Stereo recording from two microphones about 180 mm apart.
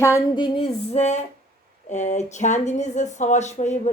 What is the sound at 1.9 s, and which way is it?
Speech, 40° left (ahead or behind).